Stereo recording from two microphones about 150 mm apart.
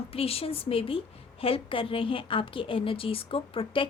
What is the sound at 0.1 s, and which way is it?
A woman's voice, 40° left (ahead or behind).